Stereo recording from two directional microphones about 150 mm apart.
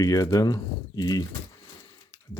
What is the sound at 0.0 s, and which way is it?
Speech, 25° left (ahead or behind).